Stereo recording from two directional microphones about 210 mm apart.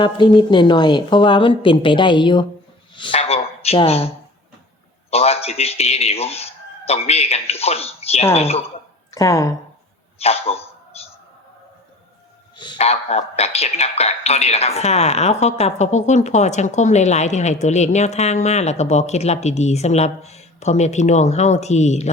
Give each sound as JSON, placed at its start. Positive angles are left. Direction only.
{"t": 0.0, "sound": "a woman's voice", "side_deg": 20}
{"t": 5.1, "sound": "a woman's voice", "side_deg": 30}
{"t": 9.1, "sound": "speech", "side_deg": 15}
{"t": 10.2, "sound": "a sound", "side_deg": 30}
{"t": 12.5, "sound": "speech", "side_deg": 20}